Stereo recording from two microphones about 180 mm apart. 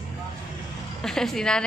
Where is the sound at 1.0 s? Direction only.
Centre (ahead or behind).